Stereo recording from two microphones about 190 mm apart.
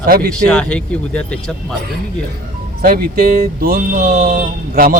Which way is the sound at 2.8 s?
50° right (ahead or behind).